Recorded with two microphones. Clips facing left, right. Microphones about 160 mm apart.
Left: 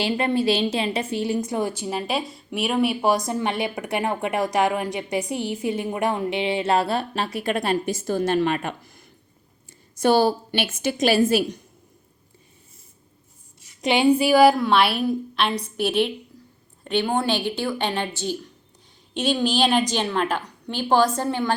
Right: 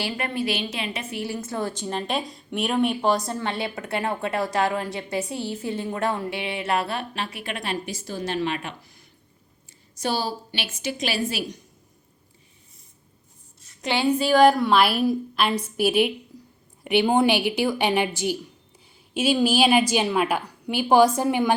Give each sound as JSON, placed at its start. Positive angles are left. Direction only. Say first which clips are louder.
{"t": 0.0, "sound": "a woman's voice", "louder": "left 6 dB", "side_deg": 25}
{"t": 1.2, "sound": "a woman's voice", "louder": "left 3 dB", "side_deg": 20}
{"t": 13.6, "sound": "a woman's voice", "louder": "left 4 dB", "side_deg": 15}